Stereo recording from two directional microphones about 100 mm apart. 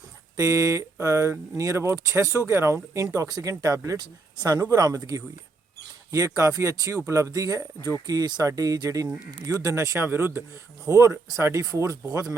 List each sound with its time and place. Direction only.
0.3 s speech: 35° right (ahead or behind)